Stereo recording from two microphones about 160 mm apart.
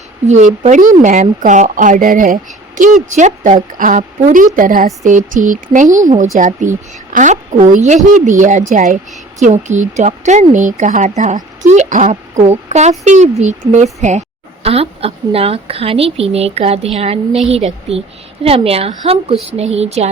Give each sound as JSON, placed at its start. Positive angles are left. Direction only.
{"t": 0.3, "sound": "a woman's voice", "side_deg": -45}